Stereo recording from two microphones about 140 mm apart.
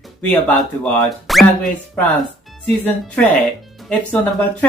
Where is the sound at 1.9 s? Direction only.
10° left (ahead or behind).